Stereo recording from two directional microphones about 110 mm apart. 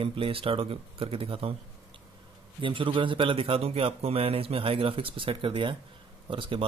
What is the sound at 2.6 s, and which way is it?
A man's voice, 50° right (ahead or behind).